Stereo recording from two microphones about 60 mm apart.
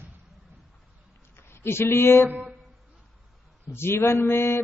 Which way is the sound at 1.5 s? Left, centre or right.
Left.